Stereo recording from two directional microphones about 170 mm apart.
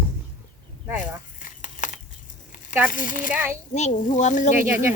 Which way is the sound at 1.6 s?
45° left (ahead or behind).